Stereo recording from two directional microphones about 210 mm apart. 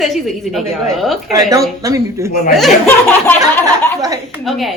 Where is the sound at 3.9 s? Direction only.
15° right (ahead or behind).